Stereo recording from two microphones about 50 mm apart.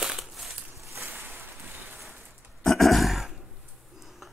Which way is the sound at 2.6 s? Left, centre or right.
Centre.